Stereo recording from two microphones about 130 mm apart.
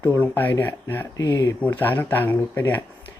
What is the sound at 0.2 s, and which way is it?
Speech, 15° left (ahead or behind).